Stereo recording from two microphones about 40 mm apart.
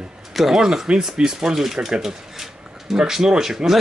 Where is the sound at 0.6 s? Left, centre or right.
Centre.